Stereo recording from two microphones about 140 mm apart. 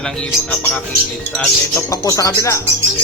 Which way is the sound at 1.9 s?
25° left (ahead or behind).